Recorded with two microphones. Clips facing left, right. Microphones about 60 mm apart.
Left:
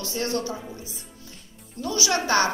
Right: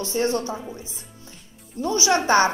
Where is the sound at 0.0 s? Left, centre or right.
Right.